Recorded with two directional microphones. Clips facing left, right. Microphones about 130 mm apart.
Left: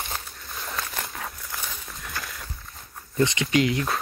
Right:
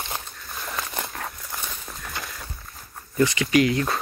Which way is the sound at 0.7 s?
20° right (ahead or behind).